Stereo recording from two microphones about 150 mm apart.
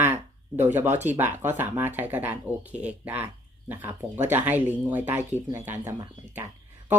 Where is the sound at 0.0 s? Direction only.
15° right (ahead or behind).